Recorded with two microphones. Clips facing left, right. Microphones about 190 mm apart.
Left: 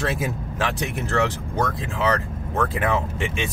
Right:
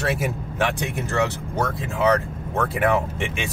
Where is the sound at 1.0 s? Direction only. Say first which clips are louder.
Left 1 dB; 10° right (ahead or behind).